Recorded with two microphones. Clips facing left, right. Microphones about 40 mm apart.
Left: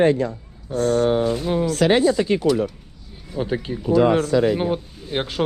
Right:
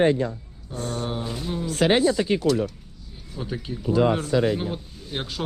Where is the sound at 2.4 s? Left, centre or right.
Centre.